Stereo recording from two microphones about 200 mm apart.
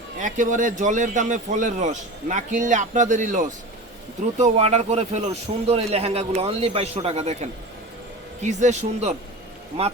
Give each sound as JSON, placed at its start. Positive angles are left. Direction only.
{"t": 0.2, "sound": "a man's voice", "side_deg": -40}
{"t": 8.4, "sound": "a man's voice", "side_deg": -35}